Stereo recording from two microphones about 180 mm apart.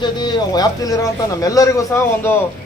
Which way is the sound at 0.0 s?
25° left (ahead or behind).